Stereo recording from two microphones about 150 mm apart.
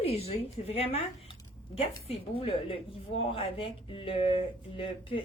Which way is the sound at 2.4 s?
40° left (ahead or behind).